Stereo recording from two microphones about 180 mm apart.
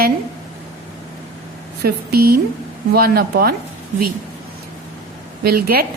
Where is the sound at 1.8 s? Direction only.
60° right (ahead or behind).